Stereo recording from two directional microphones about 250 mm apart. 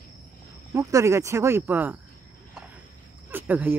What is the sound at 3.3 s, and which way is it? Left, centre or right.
Speech, centre.